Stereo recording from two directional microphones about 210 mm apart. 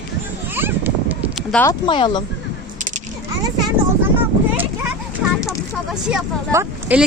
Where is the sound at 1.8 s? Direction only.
20° left (ahead or behind).